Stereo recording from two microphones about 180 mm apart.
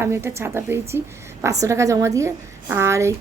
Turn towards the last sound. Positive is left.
turn(degrees=-15)  # may be behind; listen again after turning